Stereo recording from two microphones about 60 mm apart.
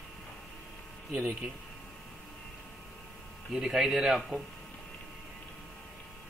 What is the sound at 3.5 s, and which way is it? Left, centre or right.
Speech, centre.